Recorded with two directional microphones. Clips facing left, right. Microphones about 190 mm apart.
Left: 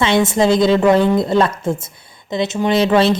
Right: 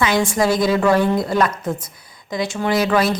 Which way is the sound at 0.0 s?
25° left (ahead or behind).